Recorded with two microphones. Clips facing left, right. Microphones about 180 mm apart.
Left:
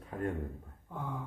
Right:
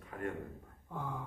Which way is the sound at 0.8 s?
Centre (ahead or behind).